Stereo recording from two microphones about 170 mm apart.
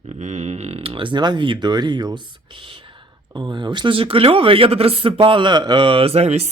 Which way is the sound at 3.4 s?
25° right (ahead or behind).